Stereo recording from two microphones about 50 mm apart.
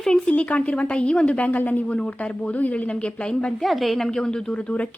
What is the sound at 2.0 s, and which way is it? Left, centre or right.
Speech, left.